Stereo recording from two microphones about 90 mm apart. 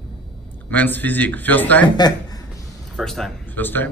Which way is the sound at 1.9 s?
50° left (ahead or behind).